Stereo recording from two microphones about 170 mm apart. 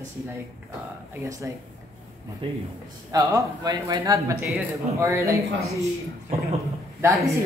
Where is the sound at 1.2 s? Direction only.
20° right (ahead or behind).